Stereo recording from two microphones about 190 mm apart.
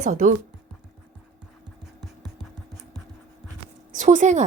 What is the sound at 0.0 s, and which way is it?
Speech, 40° right (ahead or behind).